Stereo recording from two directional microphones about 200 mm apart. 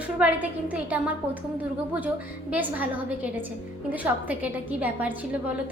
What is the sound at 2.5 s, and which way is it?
A woman's voice, 10° right (ahead or behind).